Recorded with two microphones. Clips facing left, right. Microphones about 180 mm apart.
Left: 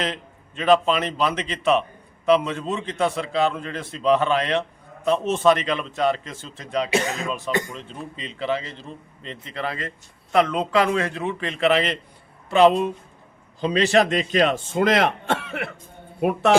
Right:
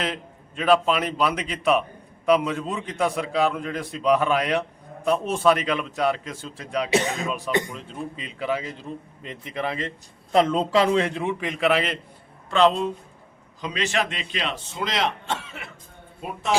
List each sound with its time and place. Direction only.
0.0 s a man's voice: 5° right (ahead or behind)
7.3 s a man's voice: 15° right (ahead or behind)
11.2 s a man's voice: 10° right (ahead or behind)
12.5 s speech: 10° left (ahead or behind)
13.6 s a man's voice: 35° left (ahead or behind); by 16.6 s 65° left (ahead or behind)